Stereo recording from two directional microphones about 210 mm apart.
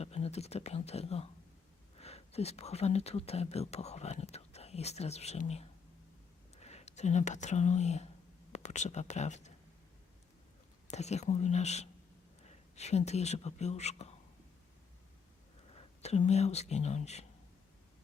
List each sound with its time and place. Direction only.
0.0 s speech: 30° left (ahead or behind)
10.8 s speech: 30° left (ahead or behind)
15.7 s speech: 30° left (ahead or behind)